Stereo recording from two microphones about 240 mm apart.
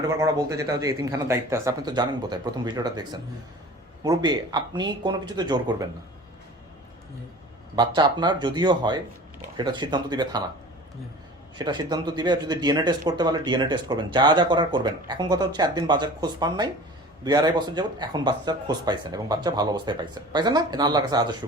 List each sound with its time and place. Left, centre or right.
0.1 s speech: centre
7.8 s speech: centre
11.5 s speech: centre